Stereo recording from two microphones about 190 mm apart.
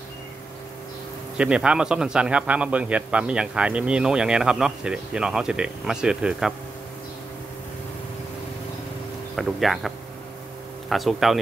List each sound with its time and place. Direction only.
1.4 s a man's voice: 5° right (ahead or behind)
9.4 s a man's voice: centre (ahead or behind)